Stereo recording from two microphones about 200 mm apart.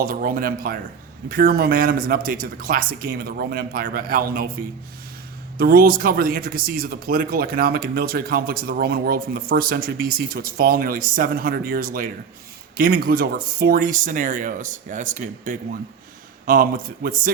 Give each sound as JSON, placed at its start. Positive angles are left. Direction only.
{"t": 0.0, "sound": "speech", "side_deg": -45}
{"t": 5.5, "sound": "speech", "side_deg": -45}